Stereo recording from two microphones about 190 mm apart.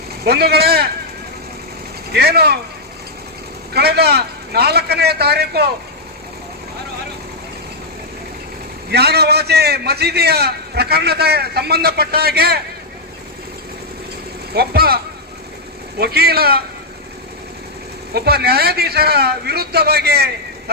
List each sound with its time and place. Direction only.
0.3 s a man's voice: 60° right (ahead or behind)
2.1 s a man's voice: 60° right (ahead or behind)
3.7 s a man's voice: 60° right (ahead or behind)
8.9 s a man's voice: 60° right (ahead or behind)
14.5 s a man's voice: 55° right (ahead or behind)
18.1 s a man's voice: 55° right (ahead or behind)